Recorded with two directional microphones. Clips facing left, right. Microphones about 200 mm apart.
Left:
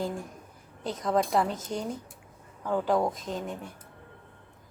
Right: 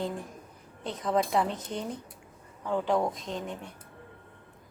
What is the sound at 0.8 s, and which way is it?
A woman's voice, centre (ahead or behind).